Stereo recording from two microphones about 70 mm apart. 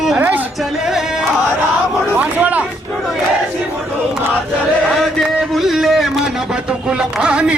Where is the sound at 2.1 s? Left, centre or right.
Right.